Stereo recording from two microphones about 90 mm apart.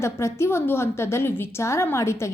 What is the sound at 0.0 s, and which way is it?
A woman's voice, 30° left (ahead or behind).